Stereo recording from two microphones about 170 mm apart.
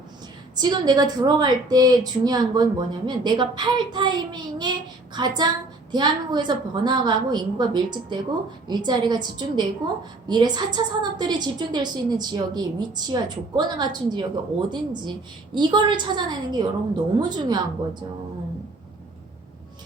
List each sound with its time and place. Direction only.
0.5 s a woman's voice: 25° right (ahead or behind)